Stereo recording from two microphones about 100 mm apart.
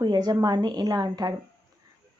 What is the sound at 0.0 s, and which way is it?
A woman's voice, 45° right (ahead or behind).